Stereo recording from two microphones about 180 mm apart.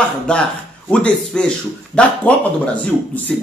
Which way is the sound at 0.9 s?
5° left (ahead or behind).